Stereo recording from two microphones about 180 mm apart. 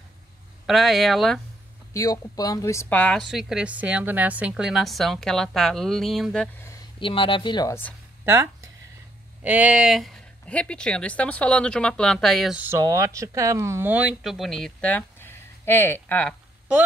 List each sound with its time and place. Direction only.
0.7 s a woman's voice: centre (ahead or behind)
2.0 s a woman's voice: 20° left (ahead or behind); by 6.5 s centre (ahead or behind)
7.0 s speech: 30° left (ahead or behind)
9.4 s a woman's voice: 10° right (ahead or behind); by 16.3 s 10° left (ahead or behind)